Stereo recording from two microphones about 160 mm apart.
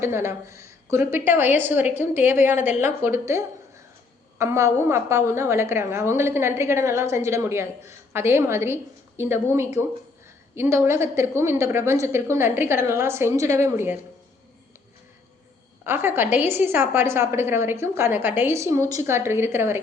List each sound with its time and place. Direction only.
0.0 s a woman's voice: 15° right (ahead or behind)
15.8 s a woman's voice: 15° right (ahead or behind)